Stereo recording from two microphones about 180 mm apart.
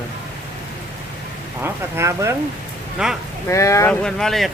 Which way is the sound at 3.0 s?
5° right (ahead or behind).